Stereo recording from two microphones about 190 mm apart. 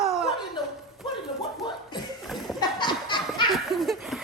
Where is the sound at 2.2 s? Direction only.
Centre (ahead or behind).